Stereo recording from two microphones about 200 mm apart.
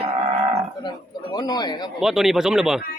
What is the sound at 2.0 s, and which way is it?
Speech, centre (ahead or behind).